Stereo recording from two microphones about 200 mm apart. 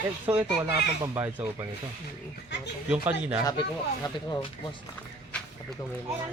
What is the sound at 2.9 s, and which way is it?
Speech, 5° right (ahead or behind).